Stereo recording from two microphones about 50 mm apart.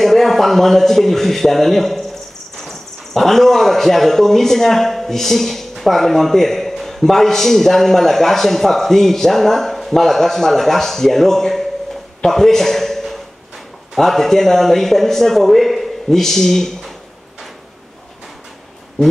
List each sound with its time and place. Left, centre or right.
0.0 s speech: centre
12.2 s a sound: centre
13.9 s speech: centre